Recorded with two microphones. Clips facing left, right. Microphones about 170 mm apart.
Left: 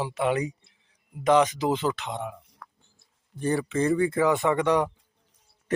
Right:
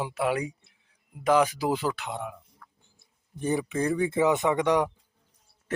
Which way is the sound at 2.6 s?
80° left.